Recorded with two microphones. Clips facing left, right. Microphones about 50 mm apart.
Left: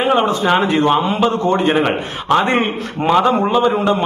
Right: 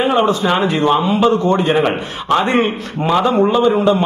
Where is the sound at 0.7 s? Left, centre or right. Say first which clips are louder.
Even; left.